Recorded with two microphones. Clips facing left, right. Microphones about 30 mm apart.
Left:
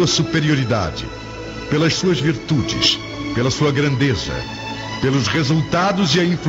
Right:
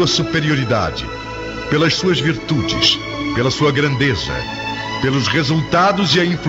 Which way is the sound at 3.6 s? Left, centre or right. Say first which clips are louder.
Right 2 dB; centre.